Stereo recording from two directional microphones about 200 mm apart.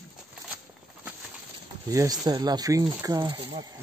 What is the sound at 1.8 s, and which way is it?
Speech, 15° right (ahead or behind).